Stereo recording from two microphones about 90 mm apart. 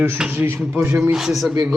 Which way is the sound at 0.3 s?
25° right (ahead or behind).